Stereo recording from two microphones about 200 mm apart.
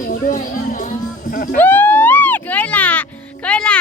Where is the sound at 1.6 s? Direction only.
10° left (ahead or behind).